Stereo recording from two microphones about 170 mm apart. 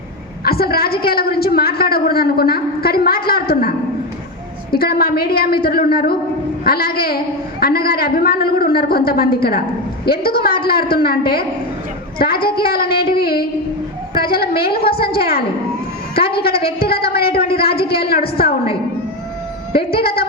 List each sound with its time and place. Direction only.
0.4 s a woman's voice: 65° left (ahead or behind)
4.7 s a woman's voice: 65° left (ahead or behind)
19.9 s a woman's voice: 65° left (ahead or behind)